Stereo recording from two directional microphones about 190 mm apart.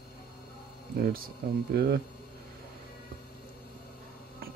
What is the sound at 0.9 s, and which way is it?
Speech, 55° right (ahead or behind).